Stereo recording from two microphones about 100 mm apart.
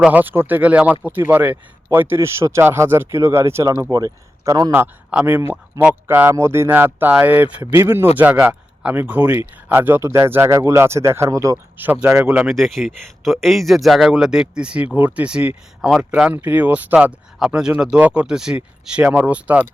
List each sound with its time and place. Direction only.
0.0 s speech: 15° right (ahead or behind); by 4.7 s 40° right (ahead or behind)
5.1 s speech: 15° right (ahead or behind)
5.4 s speech: 30° right (ahead or behind)
5.8 s speech: 15° right (ahead or behind)
8.2 s speech: 10° right (ahead or behind)